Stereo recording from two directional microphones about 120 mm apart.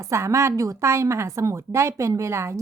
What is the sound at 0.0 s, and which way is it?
A woman's voice, 25° right (ahead or behind).